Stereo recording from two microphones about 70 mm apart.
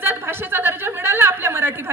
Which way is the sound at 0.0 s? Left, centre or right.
Right.